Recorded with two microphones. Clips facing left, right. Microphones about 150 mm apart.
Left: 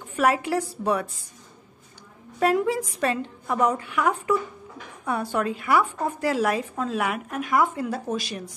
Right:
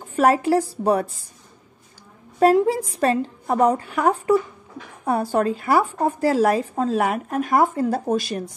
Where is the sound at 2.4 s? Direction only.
35° right (ahead or behind).